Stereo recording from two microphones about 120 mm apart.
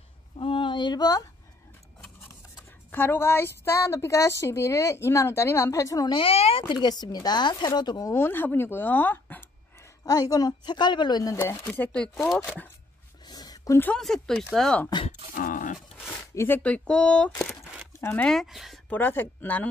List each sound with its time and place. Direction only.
0.4 s a sound: 45° left (ahead or behind)
2.9 s a woman's voice: 15° left (ahead or behind)
6.1 s speech: 55° left (ahead or behind)
6.7 s speech: 35° left (ahead or behind)
8.1 s speech: 20° left (ahead or behind)
10.0 s speech: 30° left (ahead or behind)
11.3 s a woman's voice: 20° left (ahead or behind)
13.2 s a sound: 35° left (ahead or behind)
13.9 s speech: 5° left (ahead or behind)
16.3 s speech: 15° left (ahead or behind)
18.3 s speech: centre (ahead or behind)
18.9 s speech: 15° left (ahead or behind)